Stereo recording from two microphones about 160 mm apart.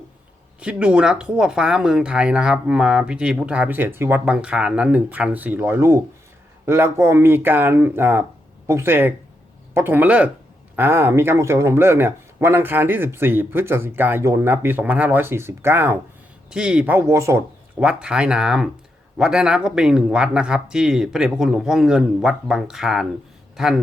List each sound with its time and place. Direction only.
0.6 s speech: 5° right (ahead or behind)
17.8 s speech: 5° right (ahead or behind)